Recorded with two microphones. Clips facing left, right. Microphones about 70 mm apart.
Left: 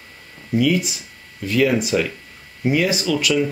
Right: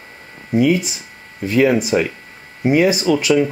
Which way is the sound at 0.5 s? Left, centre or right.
Right.